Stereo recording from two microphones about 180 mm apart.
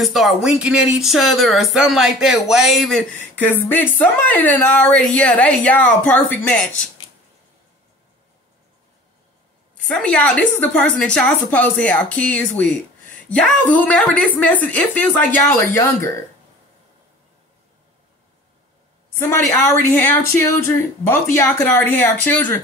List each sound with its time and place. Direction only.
0.0 s a woman's voice: centre (ahead or behind)
9.8 s a woman's voice: 5° left (ahead or behind)
15.7 s a woman's voice: 15° left (ahead or behind)
19.1 s a woman's voice: 15° left (ahead or behind)